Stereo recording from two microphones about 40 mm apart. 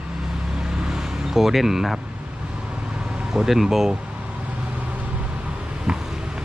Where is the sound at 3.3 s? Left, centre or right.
Centre.